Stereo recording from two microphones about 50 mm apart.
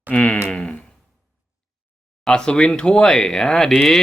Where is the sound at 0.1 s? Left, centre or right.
Centre.